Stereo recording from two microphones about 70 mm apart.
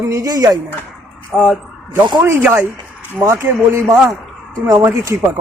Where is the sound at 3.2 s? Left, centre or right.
Right.